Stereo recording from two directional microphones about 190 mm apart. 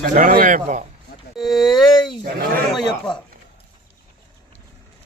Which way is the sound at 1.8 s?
25° left (ahead or behind).